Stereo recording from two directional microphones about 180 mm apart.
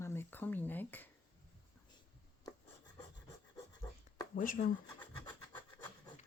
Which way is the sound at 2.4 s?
20° left (ahead or behind).